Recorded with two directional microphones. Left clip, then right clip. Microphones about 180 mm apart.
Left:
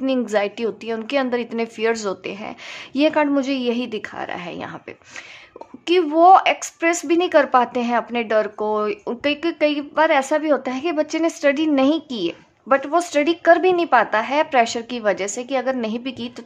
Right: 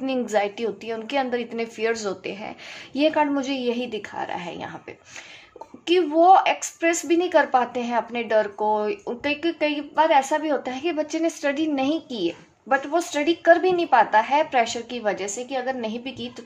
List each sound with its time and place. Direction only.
0.0 s speech: 25° left (ahead or behind)
5.9 s speech: 35° left (ahead or behind)